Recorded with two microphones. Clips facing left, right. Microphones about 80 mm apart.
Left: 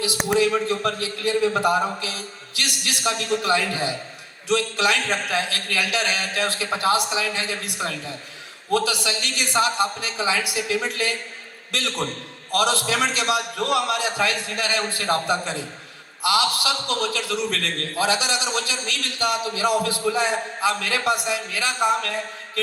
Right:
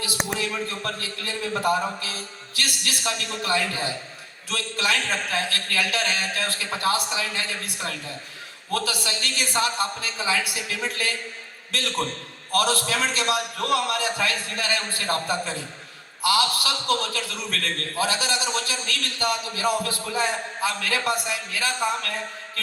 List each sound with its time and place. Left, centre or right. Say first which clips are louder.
0.2 s speech: left 4 dB; centre
0.7 s a man's voice: left 7 dB; left
12.5 s a man's voice: left 2 dB; left